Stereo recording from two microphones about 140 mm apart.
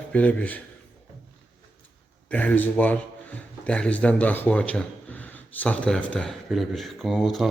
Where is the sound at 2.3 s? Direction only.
10° left (ahead or behind).